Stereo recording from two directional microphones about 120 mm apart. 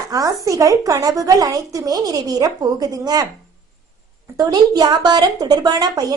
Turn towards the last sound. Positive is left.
turn(degrees=-35)  # may be behind; listen again after turning